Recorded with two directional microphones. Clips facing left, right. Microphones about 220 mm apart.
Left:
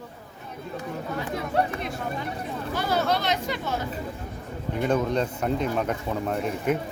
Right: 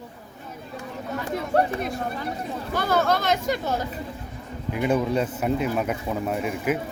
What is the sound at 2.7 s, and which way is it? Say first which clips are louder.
Speech: right 3 dB; 50° right (ahead or behind).